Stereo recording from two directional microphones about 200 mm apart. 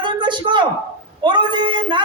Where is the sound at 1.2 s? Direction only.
25° right (ahead or behind).